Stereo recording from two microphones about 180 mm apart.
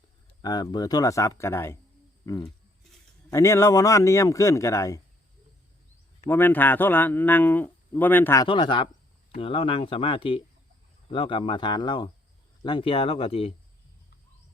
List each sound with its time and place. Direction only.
0.4 s speech: 20° left (ahead or behind)
2.2 s wild animals: 15° left (ahead or behind)
3.2 s speech: 15° left (ahead or behind)
6.2 s speech: 10° left (ahead or behind)
8.4 s speech: 25° left (ahead or behind)